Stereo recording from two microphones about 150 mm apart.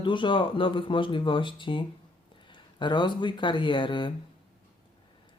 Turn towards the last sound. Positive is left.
turn(degrees=35)  # may be behind; listen again after turning